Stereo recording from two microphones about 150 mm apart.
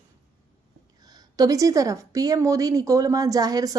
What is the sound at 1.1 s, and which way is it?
A woman's voice, 25° right (ahead or behind).